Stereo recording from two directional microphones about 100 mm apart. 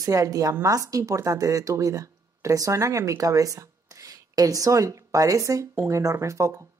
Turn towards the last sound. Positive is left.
turn(degrees=-35)  # may be behind; listen again after turning